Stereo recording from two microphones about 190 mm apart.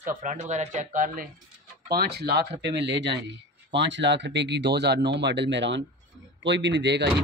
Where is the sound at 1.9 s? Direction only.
60° right (ahead or behind).